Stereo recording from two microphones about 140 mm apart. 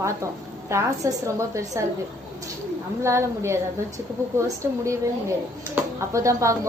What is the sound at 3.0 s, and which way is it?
Speech, 20° right (ahead or behind).